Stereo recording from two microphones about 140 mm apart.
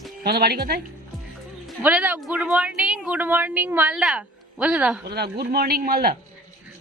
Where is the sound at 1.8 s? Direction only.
10° right (ahead or behind).